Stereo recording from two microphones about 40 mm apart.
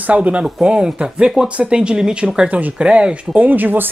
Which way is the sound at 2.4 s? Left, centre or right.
Right.